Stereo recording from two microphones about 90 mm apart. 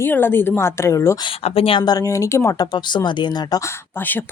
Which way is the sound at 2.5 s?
55° left (ahead or behind).